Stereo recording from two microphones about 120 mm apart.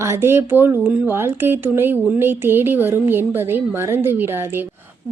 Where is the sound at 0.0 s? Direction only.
20° right (ahead or behind).